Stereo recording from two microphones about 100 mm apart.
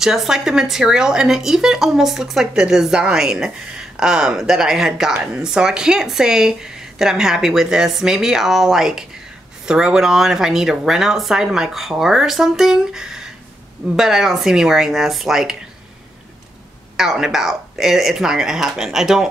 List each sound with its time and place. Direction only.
0.0 s speech: 5° right (ahead or behind)
16.9 s speech: 5° right (ahead or behind)